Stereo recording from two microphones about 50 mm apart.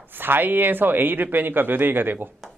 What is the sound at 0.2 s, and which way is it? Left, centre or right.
Speech, right.